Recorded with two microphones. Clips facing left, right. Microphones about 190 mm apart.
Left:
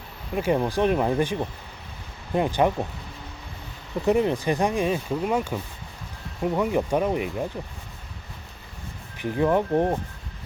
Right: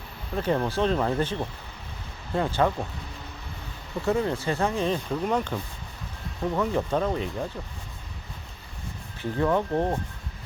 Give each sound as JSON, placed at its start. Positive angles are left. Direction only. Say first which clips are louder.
{"t": 0.3, "sound": "speech", "louder": "left 2 dB", "side_deg": 10}
{"t": 4.0, "sound": "speech", "louder": "left 4 dB", "side_deg": 15}
{"t": 9.1, "sound": "speech", "louder": "left 3 dB", "side_deg": 15}